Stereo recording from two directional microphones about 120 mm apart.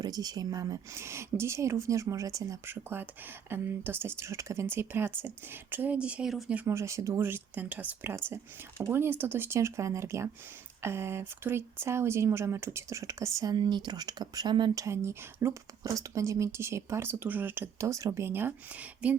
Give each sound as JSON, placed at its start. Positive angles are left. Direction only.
{"t": 0.0, "sound": "speech", "side_deg": -35}
{"t": 6.7, "sound": "speech", "side_deg": -25}
{"t": 14.8, "sound": "speech", "side_deg": -25}